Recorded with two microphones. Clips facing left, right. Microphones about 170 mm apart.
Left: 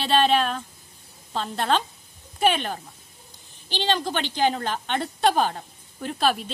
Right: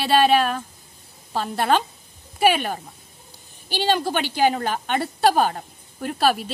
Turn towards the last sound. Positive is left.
turn(degrees=-5)  # may be behind; listen again after turning